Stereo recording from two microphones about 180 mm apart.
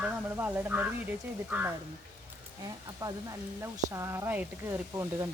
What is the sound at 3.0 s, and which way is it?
Speech, 20° right (ahead or behind).